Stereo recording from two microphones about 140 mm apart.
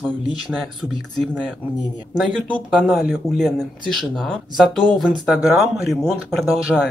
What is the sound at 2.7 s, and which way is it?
Speech, 5° right (ahead or behind).